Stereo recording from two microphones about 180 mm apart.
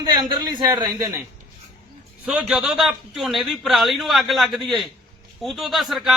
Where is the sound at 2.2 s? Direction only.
5° right (ahead or behind).